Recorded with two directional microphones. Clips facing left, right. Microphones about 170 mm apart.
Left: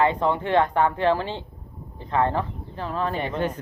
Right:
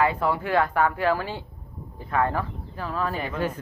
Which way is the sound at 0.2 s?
25° left (ahead or behind).